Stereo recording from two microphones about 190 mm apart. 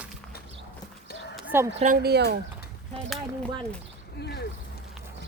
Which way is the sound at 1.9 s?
55° right (ahead or behind).